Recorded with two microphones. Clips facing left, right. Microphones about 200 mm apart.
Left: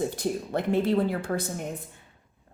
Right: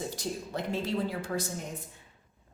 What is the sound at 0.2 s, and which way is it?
A woman's voice, 55° left (ahead or behind).